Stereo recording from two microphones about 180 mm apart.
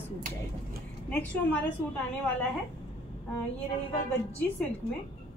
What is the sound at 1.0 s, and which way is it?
Speech, 10° left (ahead or behind).